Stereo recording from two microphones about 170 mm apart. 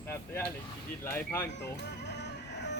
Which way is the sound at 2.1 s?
90° left.